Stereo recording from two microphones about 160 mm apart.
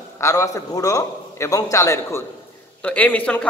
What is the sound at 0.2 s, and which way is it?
A man's voice, 20° left (ahead or behind).